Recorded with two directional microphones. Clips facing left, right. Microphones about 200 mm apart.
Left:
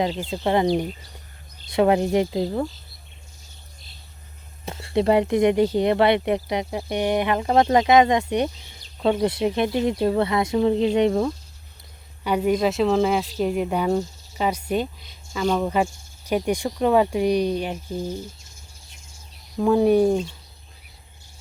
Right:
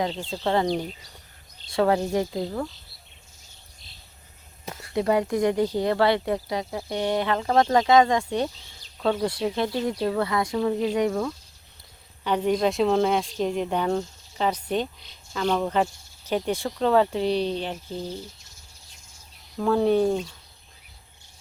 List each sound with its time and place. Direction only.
0.1 s speech: 5° left (ahead or behind)
1.7 s speech: 20° left (ahead or behind)
4.6 s speech: 25° left (ahead or behind)
12.2 s speech: 10° left (ahead or behind)
19.5 s speech: 15° left (ahead or behind)